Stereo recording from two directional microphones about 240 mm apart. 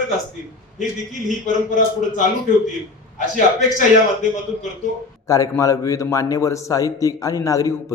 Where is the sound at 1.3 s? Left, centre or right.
Left.